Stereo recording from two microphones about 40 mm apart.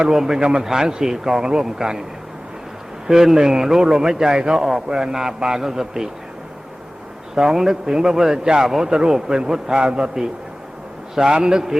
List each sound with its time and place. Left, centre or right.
0.1 s a man's voice: centre
3.1 s a man's voice: centre
7.3 s a man's voice: centre
11.3 s a man's voice: right